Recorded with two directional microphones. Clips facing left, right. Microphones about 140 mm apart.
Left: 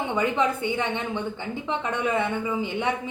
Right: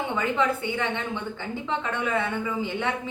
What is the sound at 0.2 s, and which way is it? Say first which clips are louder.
A woman's voice: left 2 dB; 20° left (ahead or behind).